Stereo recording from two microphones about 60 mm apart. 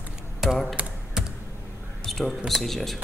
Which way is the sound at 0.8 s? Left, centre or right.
Right.